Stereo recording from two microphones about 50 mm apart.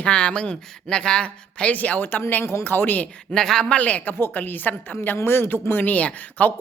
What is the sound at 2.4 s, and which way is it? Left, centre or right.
Speech, left.